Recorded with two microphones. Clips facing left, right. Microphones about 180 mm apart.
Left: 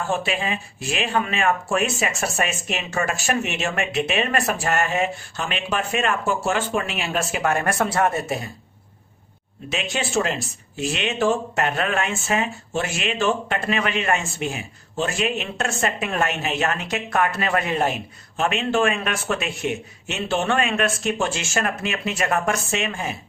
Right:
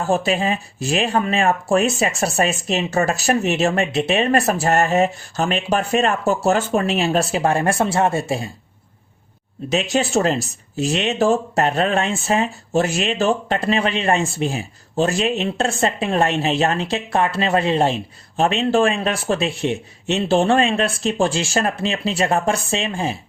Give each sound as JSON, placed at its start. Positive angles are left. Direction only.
{"t": 0.0, "sound": "speech", "side_deg": -40}
{"t": 9.6, "sound": "speech", "side_deg": -40}